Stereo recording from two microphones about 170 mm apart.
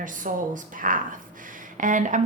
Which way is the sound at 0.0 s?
50° right (ahead or behind).